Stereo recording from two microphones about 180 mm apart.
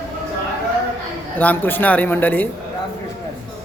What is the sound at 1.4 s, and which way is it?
Speech, 10° left (ahead or behind).